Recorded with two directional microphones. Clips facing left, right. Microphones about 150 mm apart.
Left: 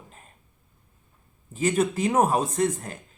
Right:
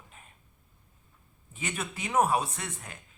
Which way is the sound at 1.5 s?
40° left (ahead or behind).